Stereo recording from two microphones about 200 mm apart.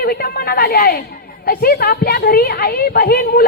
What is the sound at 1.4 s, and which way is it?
A woman's voice, 50° left (ahead or behind).